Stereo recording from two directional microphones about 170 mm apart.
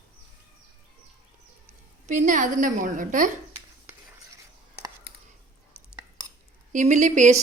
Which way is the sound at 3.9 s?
15° right (ahead or behind).